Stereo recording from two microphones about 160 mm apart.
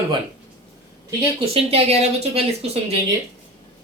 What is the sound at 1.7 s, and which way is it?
Speech, 40° right (ahead or behind).